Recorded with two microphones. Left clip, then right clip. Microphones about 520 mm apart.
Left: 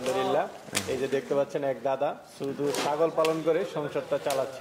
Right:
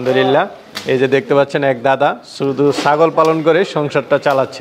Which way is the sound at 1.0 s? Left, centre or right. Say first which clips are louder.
Right 16 dB; right.